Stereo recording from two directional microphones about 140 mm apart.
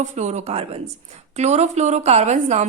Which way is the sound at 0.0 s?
55° right (ahead or behind).